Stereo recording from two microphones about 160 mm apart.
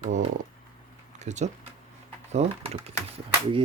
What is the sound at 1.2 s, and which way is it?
Speech, 45° right (ahead or behind).